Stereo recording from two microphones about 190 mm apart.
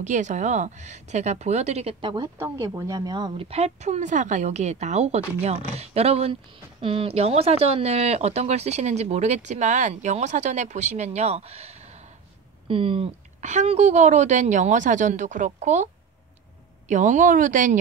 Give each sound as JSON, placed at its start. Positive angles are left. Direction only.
{"t": 0.0, "sound": "speech", "side_deg": -40}
{"t": 2.3, "sound": "speech", "side_deg": -15}